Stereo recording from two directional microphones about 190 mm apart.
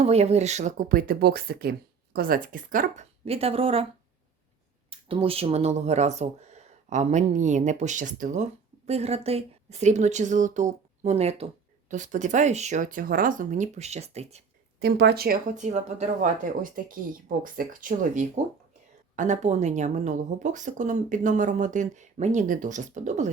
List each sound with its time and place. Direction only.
0.0 s speech: 35° right (ahead or behind)
3.2 s speech: 30° right (ahead or behind)
4.9 s speech: 30° right (ahead or behind)
14.8 s speech: 60° right (ahead or behind); by 23.3 s 40° right (ahead or behind)